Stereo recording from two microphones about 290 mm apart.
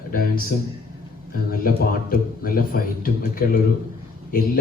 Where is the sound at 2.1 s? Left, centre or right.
Left.